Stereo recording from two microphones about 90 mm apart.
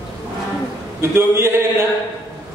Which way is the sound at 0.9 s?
30° right (ahead or behind).